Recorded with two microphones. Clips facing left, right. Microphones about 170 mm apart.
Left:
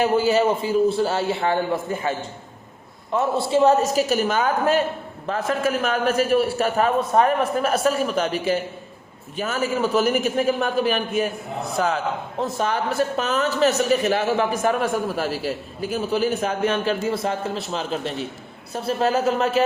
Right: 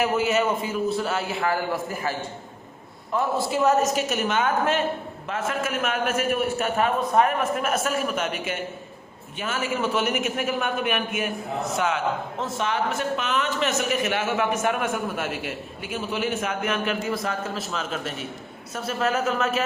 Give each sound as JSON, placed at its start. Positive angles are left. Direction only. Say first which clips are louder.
{"t": 0.0, "sound": "a man's voice", "louder": "left 4 dB", "side_deg": 30}
{"t": 3.5, "sound": "a man's voice", "louder": "left 5 dB", "side_deg": 30}